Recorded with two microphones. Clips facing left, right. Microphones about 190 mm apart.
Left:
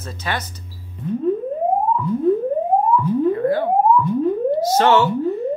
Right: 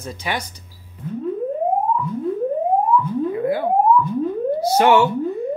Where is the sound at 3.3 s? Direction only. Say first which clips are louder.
Left 2 dB; 15° right (ahead or behind).